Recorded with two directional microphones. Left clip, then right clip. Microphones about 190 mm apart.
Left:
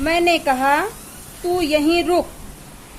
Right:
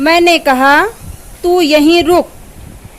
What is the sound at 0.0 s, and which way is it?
A woman's voice, 50° right (ahead or behind).